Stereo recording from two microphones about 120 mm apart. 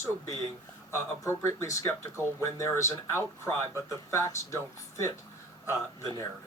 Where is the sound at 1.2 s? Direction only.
25° left (ahead or behind).